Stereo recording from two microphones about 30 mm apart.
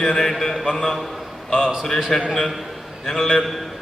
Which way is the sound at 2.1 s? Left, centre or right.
Centre.